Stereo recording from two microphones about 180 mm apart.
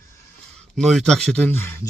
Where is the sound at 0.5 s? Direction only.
Centre (ahead or behind).